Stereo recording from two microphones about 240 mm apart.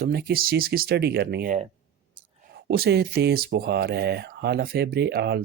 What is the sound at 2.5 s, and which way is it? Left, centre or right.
Speech, right.